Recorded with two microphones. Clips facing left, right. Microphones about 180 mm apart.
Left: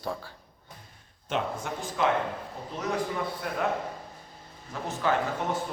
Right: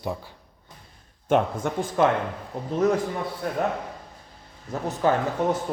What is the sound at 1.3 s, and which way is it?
Speech, 50° right (ahead or behind).